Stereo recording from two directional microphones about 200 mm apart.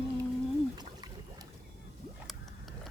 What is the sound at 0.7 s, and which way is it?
Boat, 20° right (ahead or behind).